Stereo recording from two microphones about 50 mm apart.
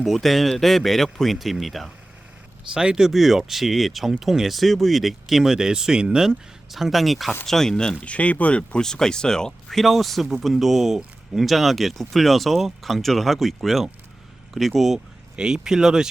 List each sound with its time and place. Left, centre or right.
0.0 s speech: centre
2.7 s speech: centre
8.0 s speech: left
8.8 s speech: centre
14.9 s speech: centre